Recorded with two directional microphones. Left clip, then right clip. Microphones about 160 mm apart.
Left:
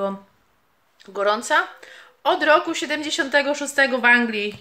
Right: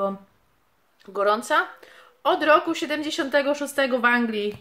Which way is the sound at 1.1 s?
15° right (ahead or behind).